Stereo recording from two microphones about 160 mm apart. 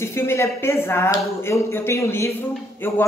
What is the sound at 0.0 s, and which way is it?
Speech, 15° left (ahead or behind).